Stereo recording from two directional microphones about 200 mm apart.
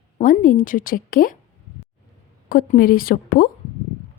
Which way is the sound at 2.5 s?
45° left (ahead or behind).